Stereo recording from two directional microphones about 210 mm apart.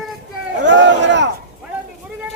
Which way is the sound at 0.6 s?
60° right (ahead or behind).